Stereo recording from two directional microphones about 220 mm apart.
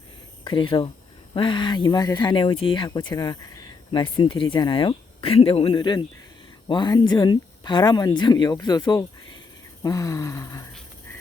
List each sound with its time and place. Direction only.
0.4 s speech: 20° left (ahead or behind)